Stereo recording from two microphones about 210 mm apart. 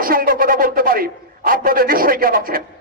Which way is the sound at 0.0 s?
45° right (ahead or behind).